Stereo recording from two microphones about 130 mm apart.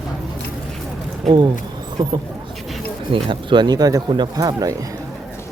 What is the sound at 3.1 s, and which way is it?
Speech, 40° right (ahead or behind).